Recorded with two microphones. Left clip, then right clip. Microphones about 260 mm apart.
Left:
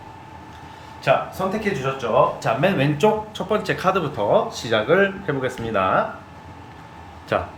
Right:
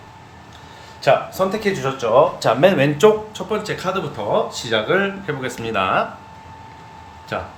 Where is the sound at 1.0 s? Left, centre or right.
Right.